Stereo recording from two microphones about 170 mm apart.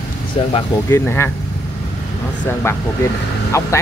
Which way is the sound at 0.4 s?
30° left (ahead or behind).